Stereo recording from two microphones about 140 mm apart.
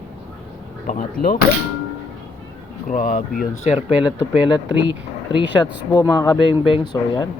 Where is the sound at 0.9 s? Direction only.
90° left.